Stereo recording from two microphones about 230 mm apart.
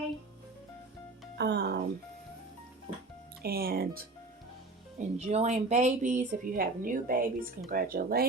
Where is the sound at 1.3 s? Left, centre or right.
Right.